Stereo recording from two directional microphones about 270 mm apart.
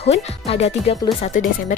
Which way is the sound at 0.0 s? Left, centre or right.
Left.